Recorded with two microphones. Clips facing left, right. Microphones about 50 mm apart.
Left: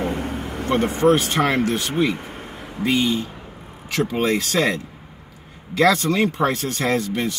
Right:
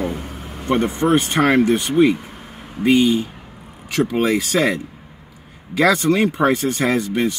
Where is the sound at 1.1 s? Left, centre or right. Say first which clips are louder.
Right 4 dB; right.